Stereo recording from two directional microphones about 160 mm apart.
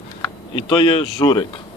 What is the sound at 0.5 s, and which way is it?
Speech, 30° left (ahead or behind).